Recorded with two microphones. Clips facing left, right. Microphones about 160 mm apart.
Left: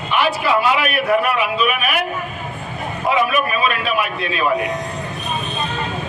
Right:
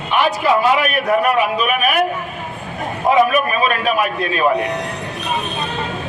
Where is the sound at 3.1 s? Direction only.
45° right (ahead or behind).